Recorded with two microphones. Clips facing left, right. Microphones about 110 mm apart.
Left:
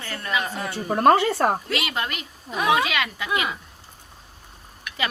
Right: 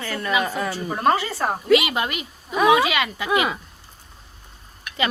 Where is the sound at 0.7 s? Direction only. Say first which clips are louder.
Left 5 dB; 55° left (ahead or behind).